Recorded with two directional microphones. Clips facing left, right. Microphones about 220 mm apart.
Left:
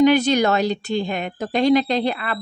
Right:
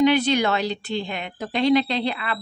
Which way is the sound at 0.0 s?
45° left (ahead or behind).